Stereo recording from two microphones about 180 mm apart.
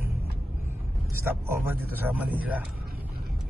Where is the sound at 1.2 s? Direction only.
10° right (ahead or behind).